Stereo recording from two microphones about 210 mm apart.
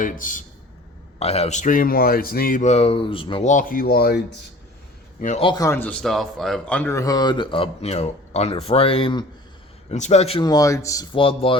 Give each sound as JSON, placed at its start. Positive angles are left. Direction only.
{"t": 0.0, "sound": "speech", "side_deg": 40}
{"t": 5.2, "sound": "speech", "side_deg": 35}
{"t": 5.5, "sound": "a man's voice", "side_deg": 15}